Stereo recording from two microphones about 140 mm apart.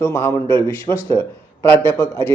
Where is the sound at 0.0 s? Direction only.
15° left (ahead or behind).